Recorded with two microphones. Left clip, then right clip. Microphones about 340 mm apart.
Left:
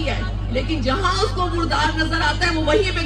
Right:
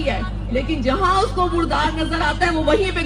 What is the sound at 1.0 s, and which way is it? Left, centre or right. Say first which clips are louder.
A woman's voice: right 6 dB; right.